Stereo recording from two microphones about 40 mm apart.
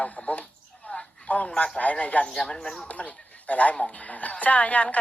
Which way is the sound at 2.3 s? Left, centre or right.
Centre.